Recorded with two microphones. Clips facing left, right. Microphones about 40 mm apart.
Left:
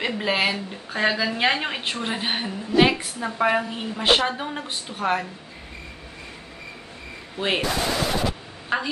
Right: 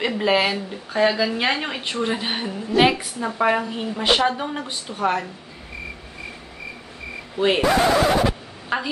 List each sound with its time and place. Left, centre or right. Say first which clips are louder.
0.0 s a woman's voice: right 3 dB; centre
7.3 s a woman's voice: right 5 dB; centre
7.7 s speech: right 7 dB; right
8.7 s a woman's voice: even; centre